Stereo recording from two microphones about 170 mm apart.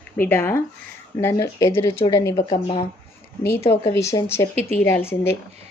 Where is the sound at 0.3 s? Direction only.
15° left (ahead or behind); by 2.8 s 30° left (ahead or behind).